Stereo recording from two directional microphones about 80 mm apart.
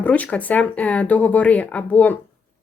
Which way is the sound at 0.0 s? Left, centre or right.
Centre.